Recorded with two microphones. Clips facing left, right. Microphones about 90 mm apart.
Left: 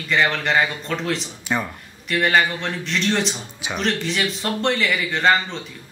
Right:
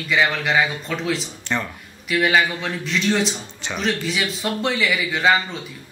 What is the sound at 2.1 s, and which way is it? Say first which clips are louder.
A man's voice: even; centre (ahead or behind).